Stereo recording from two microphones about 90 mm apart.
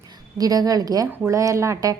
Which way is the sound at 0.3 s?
45° right (ahead or behind).